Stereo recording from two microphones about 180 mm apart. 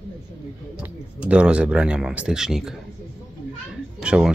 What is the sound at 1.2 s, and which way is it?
Speech, 5° right (ahead or behind).